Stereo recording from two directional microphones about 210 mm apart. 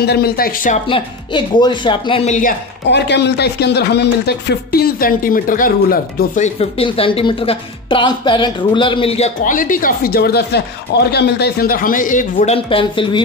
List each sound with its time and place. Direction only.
0.0 s speech: 50° left (ahead or behind)
0.8 s speech: 25° left (ahead or behind)
2.9 s speech: 55° left (ahead or behind); by 12.5 s 40° left (ahead or behind)
12.5 s speech: 25° left (ahead or behind)